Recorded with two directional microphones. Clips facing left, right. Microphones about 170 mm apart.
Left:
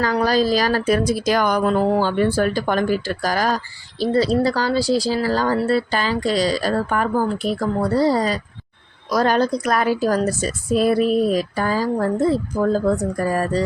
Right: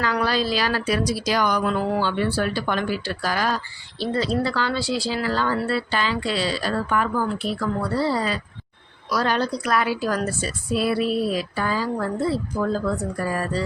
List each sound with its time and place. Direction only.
0.0 s speech: 40° left (ahead or behind)